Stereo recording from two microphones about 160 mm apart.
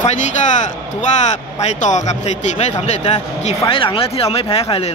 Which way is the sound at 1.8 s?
50° left (ahead or behind).